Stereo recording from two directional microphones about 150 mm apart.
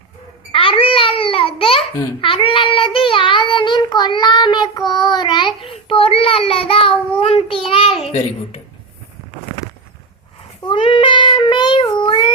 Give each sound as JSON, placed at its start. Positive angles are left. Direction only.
{"t": 0.5, "sound": "babbling", "side_deg": 35}
{"t": 2.2, "sound": "child singing", "side_deg": 35}
{"t": 10.7, "sound": "child singing", "side_deg": 35}